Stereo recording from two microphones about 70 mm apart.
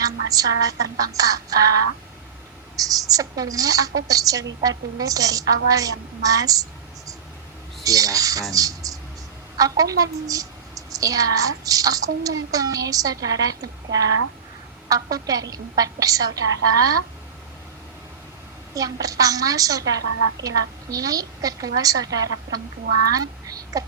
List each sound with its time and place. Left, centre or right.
0.0 s a woman's voice: right
2.7 s a woman's voice: right
7.9 s a woman's voice: right
18.7 s a woman's voice: right
23.1 s a woman's voice: right